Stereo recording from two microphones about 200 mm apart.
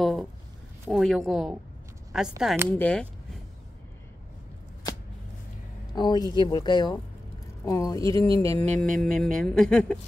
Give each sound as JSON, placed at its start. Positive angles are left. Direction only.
{"t": 0.0, "sound": "a sound", "side_deg": 0}
{"t": 0.8, "sound": "speech", "side_deg": 0}
{"t": 5.9, "sound": "speech", "side_deg": 20}